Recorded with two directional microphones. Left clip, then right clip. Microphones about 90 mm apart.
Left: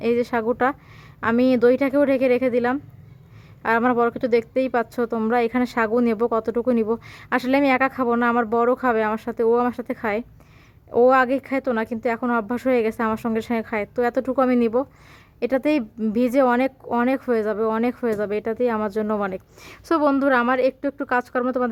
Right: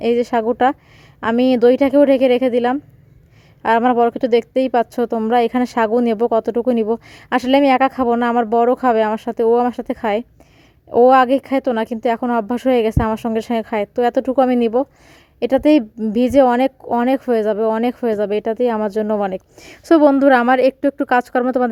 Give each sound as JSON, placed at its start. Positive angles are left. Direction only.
{"t": 0.0, "sound": "speech", "side_deg": -55}
{"t": 10.9, "sound": "speech", "side_deg": -75}
{"t": 19.8, "sound": "a woman's voice", "side_deg": -70}